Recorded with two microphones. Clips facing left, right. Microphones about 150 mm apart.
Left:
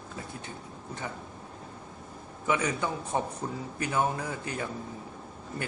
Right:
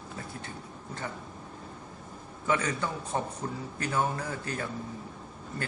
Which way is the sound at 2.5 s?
15° left (ahead or behind).